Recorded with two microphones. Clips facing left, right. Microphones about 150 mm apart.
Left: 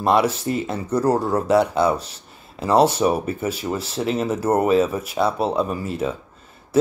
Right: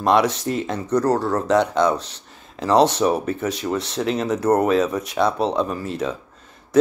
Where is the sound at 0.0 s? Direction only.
5° left (ahead or behind).